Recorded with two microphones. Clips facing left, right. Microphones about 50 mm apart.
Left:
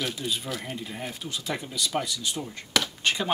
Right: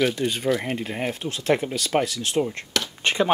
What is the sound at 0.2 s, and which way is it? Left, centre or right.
Speech, right.